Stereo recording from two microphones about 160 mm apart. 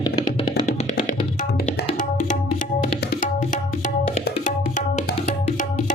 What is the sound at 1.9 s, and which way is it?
Tabla, 55° left (ahead or behind).